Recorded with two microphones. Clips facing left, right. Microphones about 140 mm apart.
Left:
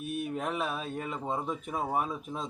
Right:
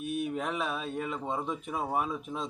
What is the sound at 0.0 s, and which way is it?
A man's voice, centre (ahead or behind).